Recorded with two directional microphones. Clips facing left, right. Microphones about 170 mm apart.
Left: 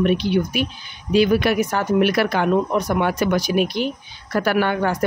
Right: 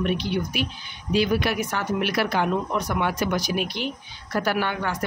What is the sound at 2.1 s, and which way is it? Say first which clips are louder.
Speech: left 4 dB; 60° left (ahead or behind).